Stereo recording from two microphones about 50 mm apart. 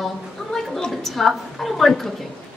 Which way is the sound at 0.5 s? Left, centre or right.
Centre.